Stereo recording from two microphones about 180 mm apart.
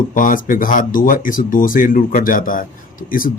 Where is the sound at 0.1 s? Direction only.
50° left (ahead or behind).